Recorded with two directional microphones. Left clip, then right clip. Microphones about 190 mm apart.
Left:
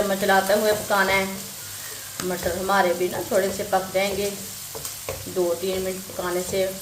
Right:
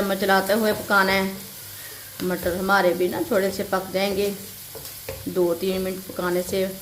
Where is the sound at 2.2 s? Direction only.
15° left (ahead or behind).